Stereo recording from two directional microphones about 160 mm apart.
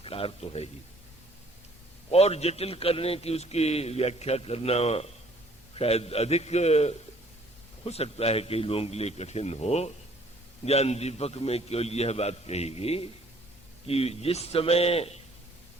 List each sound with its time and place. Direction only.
0.0 s a man's voice: 35° left (ahead or behind)
2.0 s a man's voice: 40° left (ahead or behind)